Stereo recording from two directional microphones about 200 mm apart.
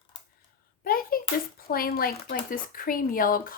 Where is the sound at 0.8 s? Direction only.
45° left (ahead or behind).